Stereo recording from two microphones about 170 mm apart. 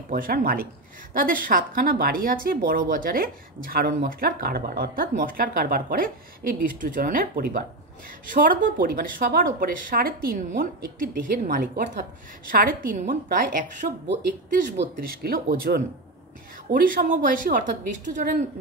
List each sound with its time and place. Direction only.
0.1 s a woman's voice: 55° right (ahead or behind)
14.8 s a woman's voice: 60° right (ahead or behind)